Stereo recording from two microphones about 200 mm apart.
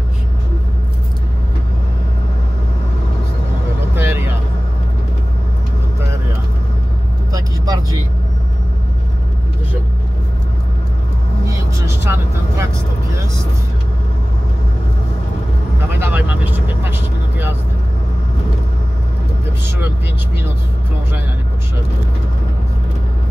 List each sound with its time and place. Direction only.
3.9 s vehicle: 10° right (ahead or behind)
7.3 s vehicle: 15° right (ahead or behind)
12.0 s vehicle: 10° right (ahead or behind)
16.0 s vehicle: 10° right (ahead or behind)